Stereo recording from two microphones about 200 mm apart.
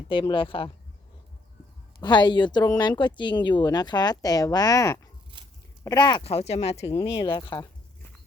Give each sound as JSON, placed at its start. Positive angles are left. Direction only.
{"t": 0.1, "sound": "speech", "side_deg": 25}
{"t": 2.0, "sound": "speech", "side_deg": 20}